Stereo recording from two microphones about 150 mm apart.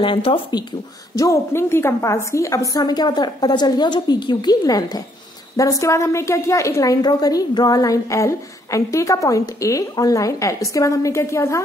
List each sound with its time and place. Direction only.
0.0 s a woman's voice: 35° left (ahead or behind); by 11.6 s 20° left (ahead or behind)